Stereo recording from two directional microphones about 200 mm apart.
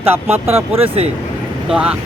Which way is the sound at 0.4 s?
30° right (ahead or behind).